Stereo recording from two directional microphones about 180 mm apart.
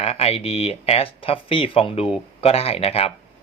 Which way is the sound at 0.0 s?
35° left (ahead or behind).